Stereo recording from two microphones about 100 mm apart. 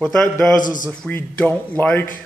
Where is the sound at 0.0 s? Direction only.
5° left (ahead or behind).